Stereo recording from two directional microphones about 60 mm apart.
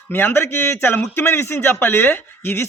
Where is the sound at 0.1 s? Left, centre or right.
Left.